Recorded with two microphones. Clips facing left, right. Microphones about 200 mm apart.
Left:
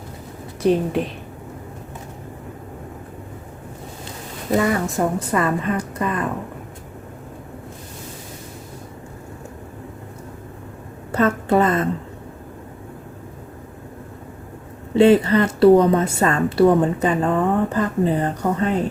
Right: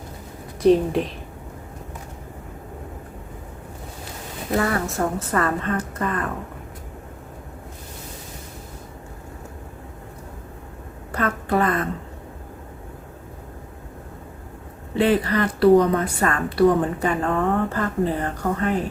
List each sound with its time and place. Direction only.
0.6 s a woman's voice: centre (ahead or behind)
4.5 s a woman's voice: 15° left (ahead or behind)
11.1 s a woman's voice: 25° left (ahead or behind)
14.9 s speech: 25° left (ahead or behind)